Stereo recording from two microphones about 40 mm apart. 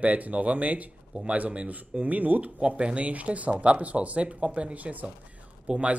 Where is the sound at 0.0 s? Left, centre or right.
Right.